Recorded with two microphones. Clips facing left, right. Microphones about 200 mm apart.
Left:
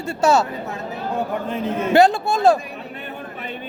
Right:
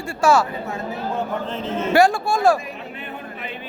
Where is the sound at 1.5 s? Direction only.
15° left (ahead or behind).